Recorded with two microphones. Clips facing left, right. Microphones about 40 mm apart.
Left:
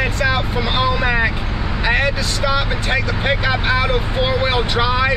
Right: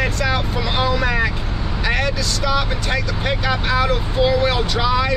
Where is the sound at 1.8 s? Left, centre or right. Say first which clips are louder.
Left 3 dB; left.